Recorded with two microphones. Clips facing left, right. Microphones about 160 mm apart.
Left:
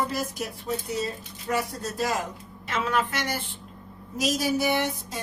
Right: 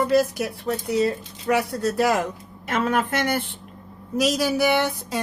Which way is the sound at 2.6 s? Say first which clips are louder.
Right 4 dB; 50° right (ahead or behind).